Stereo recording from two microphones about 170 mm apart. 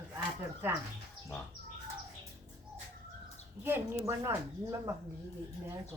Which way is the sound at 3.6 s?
15° right (ahead or behind).